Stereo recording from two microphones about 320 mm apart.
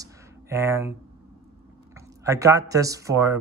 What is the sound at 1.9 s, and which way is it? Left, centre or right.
Speech, centre.